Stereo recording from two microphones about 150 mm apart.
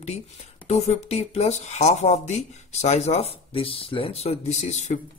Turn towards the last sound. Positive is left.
turn(degrees=50)  # may be behind; listen again after turning